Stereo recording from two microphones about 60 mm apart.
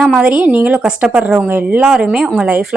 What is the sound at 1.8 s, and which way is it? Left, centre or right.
Speech, centre.